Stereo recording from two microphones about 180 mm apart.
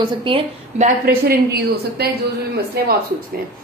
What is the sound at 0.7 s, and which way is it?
A woman's voice, 50° right (ahead or behind).